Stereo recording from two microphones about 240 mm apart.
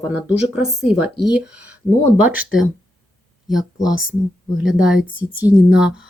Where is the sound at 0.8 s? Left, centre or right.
Centre.